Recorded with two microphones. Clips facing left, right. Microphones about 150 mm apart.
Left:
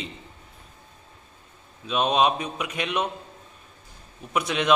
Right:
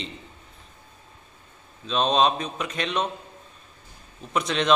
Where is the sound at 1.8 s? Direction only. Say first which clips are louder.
Even; 10° left (ahead or behind).